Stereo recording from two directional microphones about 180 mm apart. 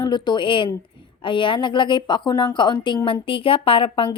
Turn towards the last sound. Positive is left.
turn(degrees=30)  # may be behind; listen again after turning